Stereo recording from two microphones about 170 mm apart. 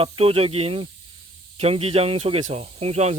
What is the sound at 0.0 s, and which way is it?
Speech, 35° right (ahead or behind).